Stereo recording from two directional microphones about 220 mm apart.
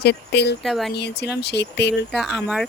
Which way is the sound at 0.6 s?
Centre (ahead or behind).